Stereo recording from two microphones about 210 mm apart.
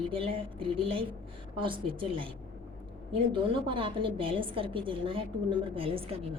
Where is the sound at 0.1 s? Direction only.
25° right (ahead or behind).